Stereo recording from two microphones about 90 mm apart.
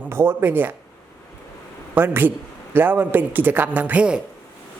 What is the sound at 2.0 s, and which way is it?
Speech, 20° right (ahead or behind).